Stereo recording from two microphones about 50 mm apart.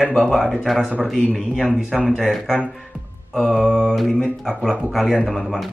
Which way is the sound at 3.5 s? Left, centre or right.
Centre.